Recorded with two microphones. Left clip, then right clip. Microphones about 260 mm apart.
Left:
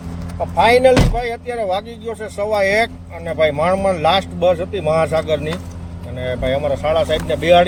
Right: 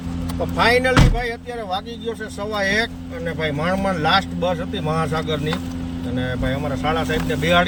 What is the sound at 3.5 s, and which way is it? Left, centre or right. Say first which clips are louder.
Speech: left 3 dB; centre.